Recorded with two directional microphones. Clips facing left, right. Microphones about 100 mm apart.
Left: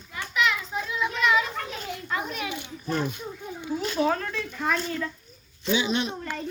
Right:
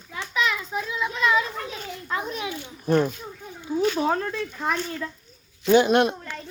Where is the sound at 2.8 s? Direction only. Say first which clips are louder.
Right 7 dB; 50° right (ahead or behind).